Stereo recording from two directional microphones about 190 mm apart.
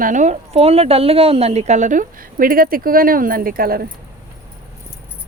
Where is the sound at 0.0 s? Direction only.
40° right (ahead or behind).